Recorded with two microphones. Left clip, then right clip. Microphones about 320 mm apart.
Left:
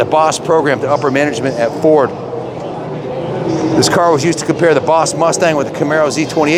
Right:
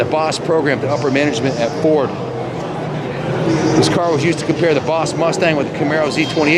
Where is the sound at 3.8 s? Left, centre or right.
Centre.